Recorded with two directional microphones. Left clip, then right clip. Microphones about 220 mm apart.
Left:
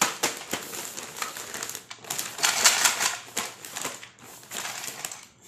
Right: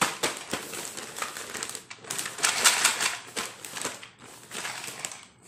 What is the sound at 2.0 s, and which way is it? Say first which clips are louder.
Typewriter: left 2 dB; 5° left (ahead or behind).